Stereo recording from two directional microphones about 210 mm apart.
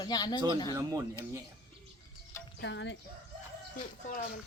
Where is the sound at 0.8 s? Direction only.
15° right (ahead or behind).